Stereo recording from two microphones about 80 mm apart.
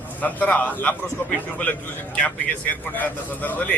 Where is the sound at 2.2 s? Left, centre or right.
Centre.